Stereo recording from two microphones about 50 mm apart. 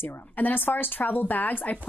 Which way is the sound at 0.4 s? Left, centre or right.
Left.